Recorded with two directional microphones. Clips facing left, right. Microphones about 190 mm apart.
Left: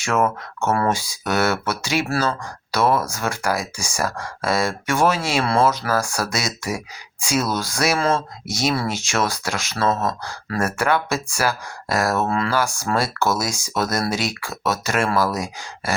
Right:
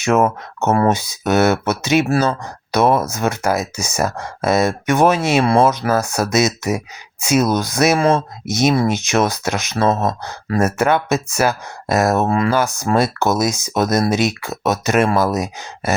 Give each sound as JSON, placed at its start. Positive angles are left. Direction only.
{"t": 0.0, "sound": "speech", "side_deg": -20}